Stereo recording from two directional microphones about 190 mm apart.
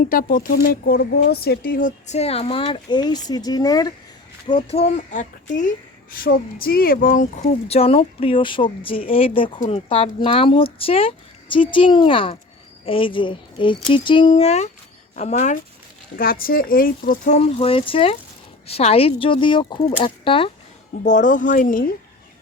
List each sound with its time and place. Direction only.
0.0 s speech: 50° left (ahead or behind)
2.0 s speech: 35° left (ahead or behind)
16.1 s speech: 50° left (ahead or behind); by 20.5 s 30° left (ahead or behind)
21.0 s speech: 40° left (ahead or behind)